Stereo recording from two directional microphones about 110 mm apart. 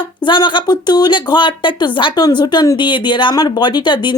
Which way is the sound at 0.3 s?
45° left (ahead or behind).